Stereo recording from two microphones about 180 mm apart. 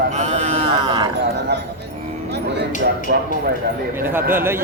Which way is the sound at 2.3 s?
65° right (ahead or behind).